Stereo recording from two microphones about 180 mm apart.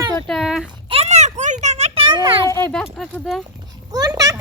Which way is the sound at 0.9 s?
35° right (ahead or behind).